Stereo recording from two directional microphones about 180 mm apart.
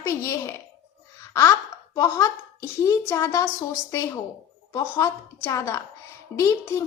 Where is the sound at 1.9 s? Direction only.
15° left (ahead or behind).